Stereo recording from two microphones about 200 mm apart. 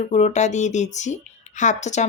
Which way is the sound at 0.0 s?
35° left (ahead or behind).